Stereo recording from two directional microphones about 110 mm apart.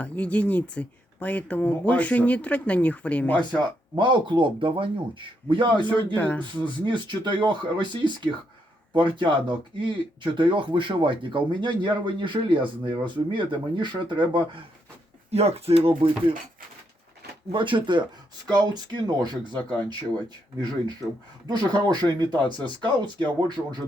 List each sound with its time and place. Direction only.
0.0 s speech: 10° left (ahead or behind)
3.6 s speech: 45° right (ahead or behind)
6.1 s speech: 15° left (ahead or behind)
6.7 s speech: 45° right (ahead or behind)
15.3 s speech: 70° right (ahead or behind)
17.5 s speech: 50° right (ahead or behind)